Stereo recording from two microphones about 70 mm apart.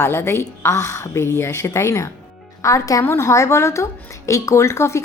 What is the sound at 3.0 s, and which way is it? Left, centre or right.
A woman's voice, left.